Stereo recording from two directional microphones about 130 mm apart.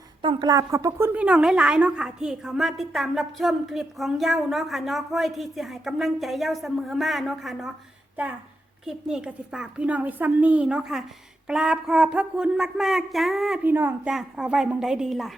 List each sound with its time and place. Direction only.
0.2 s a woman's voice: 40° right (ahead or behind)
0.5 s a woman's voice: 25° right (ahead or behind); by 7.7 s centre (ahead or behind)
8.8 s a woman's voice: 5° right (ahead or behind)
13.7 s a woman's voice: 15° right (ahead or behind)
14.1 s a woman's voice: 5° right (ahead or behind)